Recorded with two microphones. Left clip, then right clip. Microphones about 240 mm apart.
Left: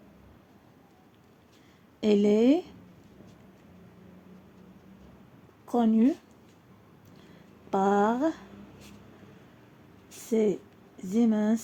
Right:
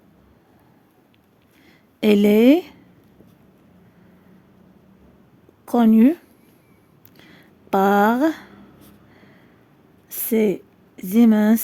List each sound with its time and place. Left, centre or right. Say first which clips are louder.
2.0 s speech: right 8 dB; right
5.6 s speech: right 9 dB; right
7.7 s speech: right 8 dB; right
10.2 s speech: right 6 dB; right